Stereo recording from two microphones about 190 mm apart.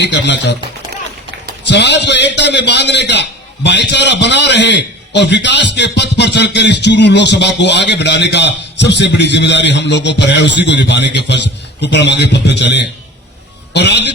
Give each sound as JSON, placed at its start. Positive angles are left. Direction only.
{"t": 0.0, "sound": "a man's voice", "side_deg": 65}
{"t": 1.6, "sound": "a man's voice", "side_deg": 65}